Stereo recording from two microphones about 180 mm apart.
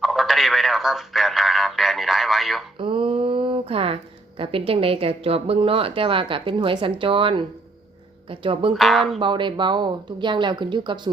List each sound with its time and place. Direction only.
0.0 s speech: centre (ahead or behind)
2.7 s a sound: 30° right (ahead or behind)
4.4 s a woman's voice: 30° right (ahead or behind)
8.7 s speech: centre (ahead or behind)
9.1 s a woman's voice: 25° right (ahead or behind)